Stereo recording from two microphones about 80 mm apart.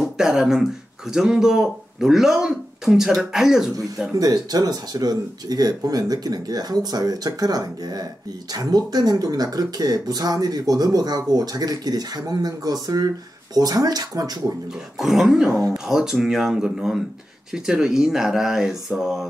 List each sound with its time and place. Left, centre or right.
0.0 s speech: centre
4.1 s speech: right
15.0 s speech: centre